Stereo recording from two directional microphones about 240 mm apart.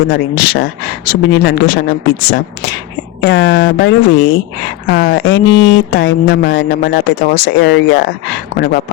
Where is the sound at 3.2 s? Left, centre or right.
Left.